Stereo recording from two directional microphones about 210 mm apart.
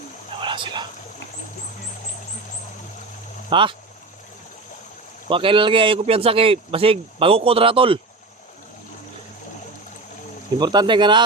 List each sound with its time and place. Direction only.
0.4 s speech: 25° right (ahead or behind)
3.5 s speech: 25° right (ahead or behind)
5.3 s speech: 25° right (ahead or behind)
10.6 s speech: 20° right (ahead or behind)